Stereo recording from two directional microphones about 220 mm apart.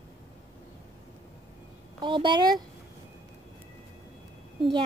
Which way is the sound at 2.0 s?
20° right (ahead or behind).